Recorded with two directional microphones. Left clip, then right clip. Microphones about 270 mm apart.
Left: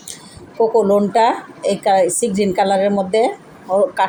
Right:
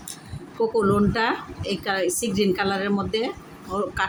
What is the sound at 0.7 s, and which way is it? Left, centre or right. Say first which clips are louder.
A woman's voice: left 8 dB; centre.